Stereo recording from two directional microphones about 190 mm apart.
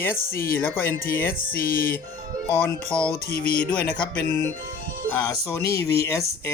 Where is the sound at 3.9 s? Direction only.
20° left (ahead or behind).